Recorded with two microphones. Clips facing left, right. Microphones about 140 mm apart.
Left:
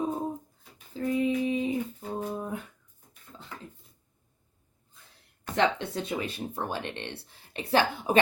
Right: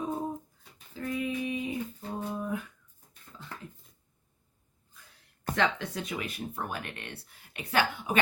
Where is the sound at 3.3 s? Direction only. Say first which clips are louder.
Even; 30° left (ahead or behind).